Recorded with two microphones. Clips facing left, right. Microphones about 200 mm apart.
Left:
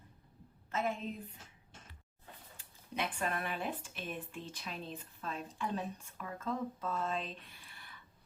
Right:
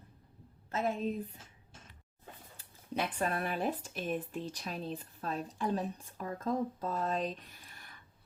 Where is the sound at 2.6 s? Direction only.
40° right (ahead or behind).